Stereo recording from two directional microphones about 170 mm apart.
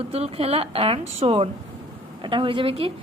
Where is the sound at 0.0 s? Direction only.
35° right (ahead or behind).